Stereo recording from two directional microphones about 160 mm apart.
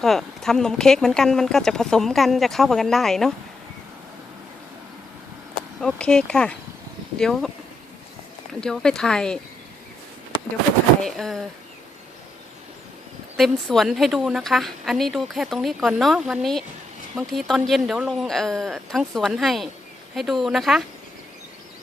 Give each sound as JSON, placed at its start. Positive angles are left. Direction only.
{"t": 0.0, "sound": "a woman's voice", "side_deg": 0}
{"t": 5.8, "sound": "a woman's voice", "side_deg": 5}
{"t": 8.6, "sound": "a woman's voice", "side_deg": 5}
{"t": 11.0, "sound": "a woman's voice", "side_deg": 0}
{"t": 13.3, "sound": "a woman's voice", "side_deg": 0}